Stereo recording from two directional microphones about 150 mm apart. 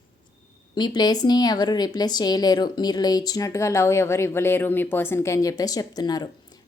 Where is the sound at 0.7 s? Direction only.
30° left (ahead or behind).